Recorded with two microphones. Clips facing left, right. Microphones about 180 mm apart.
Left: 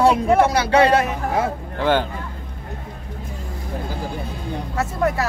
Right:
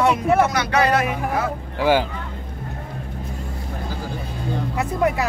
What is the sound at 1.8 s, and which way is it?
Speech, 10° right (ahead or behind).